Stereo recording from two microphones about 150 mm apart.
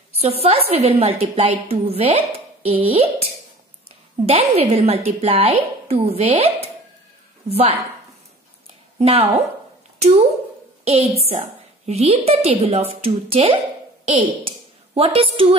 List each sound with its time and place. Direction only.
0.2 s speech: 40° right (ahead or behind)
4.3 s a woman's voice: 45° right (ahead or behind)
8.9 s a woman's voice: 40° right (ahead or behind)